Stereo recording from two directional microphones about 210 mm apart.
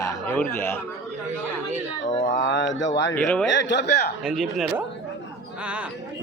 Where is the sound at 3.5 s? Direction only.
60° left (ahead or behind).